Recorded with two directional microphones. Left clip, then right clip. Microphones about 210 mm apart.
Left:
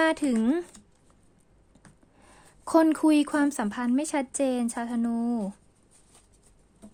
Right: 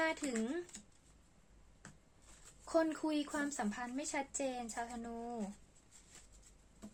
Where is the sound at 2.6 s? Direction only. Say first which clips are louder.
Left 13 dB; 55° left (ahead or behind).